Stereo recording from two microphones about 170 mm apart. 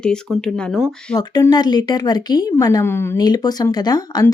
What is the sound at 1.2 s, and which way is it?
Speech, 20° left (ahead or behind).